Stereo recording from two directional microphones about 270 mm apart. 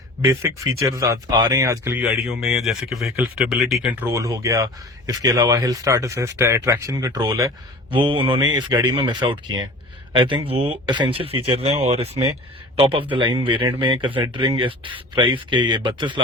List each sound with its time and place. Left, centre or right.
0.8 s speech: centre